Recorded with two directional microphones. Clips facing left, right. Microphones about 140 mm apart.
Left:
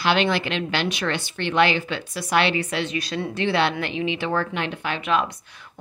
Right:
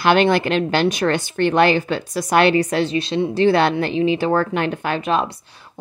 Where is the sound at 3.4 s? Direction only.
45° right (ahead or behind).